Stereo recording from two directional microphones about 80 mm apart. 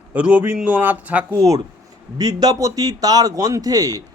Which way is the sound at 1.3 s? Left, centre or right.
Right.